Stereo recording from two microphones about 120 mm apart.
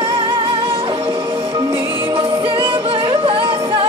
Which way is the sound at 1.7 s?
20° right (ahead or behind).